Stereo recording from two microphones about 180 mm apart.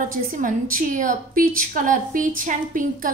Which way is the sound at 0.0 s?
50° right (ahead or behind).